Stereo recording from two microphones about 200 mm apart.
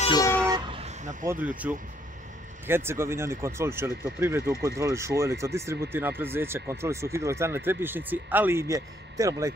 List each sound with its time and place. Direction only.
0.0 s speech: 20° left (ahead or behind)
0.5 s vehicle: 25° right (ahead or behind)
1.2 s speech: 10° right (ahead or behind)